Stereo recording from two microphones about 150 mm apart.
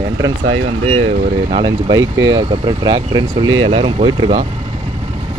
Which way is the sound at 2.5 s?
40° right (ahead or behind).